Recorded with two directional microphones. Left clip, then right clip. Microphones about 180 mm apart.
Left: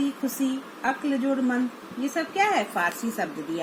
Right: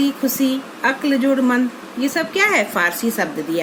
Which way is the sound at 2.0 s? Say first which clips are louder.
Right 7 dB; 20° right (ahead or behind).